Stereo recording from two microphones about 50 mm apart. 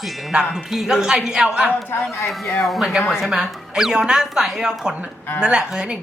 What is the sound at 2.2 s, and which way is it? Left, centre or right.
A man's voice, centre.